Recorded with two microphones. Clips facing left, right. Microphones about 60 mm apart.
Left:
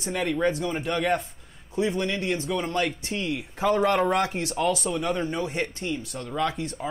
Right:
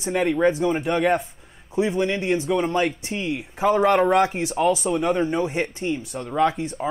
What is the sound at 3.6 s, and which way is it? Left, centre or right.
Speech, centre.